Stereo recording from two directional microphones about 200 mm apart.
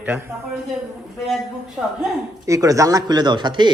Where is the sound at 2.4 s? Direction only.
15° right (ahead or behind).